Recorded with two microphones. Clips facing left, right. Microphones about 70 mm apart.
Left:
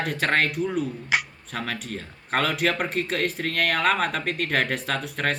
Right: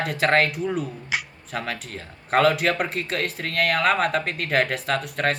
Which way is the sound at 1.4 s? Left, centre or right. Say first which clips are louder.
Right 1 dB; centre.